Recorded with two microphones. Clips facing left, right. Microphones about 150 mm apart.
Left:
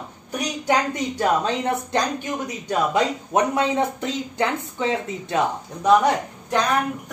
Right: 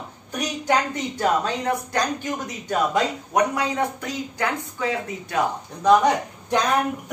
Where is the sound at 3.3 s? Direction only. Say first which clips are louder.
Left 2 dB; 25° left (ahead or behind).